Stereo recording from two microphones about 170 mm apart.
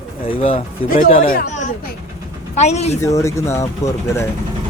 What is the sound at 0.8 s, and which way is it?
Speech, 55° left (ahead or behind).